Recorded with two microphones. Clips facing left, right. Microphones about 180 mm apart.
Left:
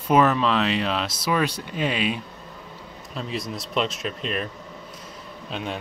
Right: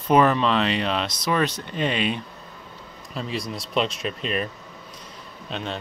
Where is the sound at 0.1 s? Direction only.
Centre (ahead or behind).